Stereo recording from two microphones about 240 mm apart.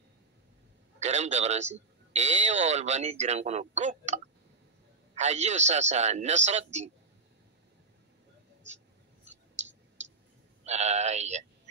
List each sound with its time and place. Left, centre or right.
0.9 s speech: right
10.6 s speech: right